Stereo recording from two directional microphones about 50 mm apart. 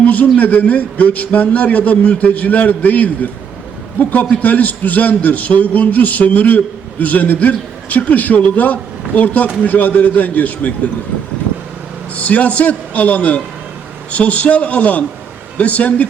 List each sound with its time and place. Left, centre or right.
0.0 s a sound: left
0.3 s a man's voice: left
12.1 s a man's voice: left